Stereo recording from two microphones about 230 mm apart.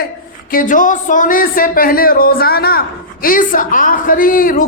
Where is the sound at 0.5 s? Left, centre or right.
Left.